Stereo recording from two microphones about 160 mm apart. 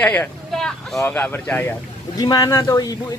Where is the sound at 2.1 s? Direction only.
25° left (ahead or behind).